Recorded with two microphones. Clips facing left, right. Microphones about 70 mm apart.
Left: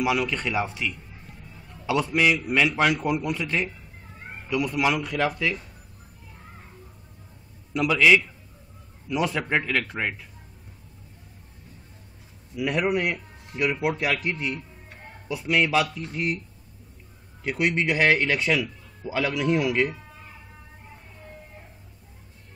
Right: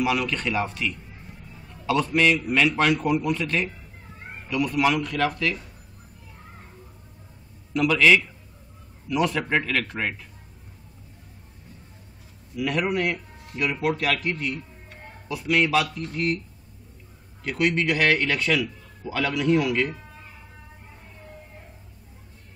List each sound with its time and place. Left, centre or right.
0.0 s speech: centre
7.7 s speech: centre
12.5 s speech: centre
17.4 s a man's voice: centre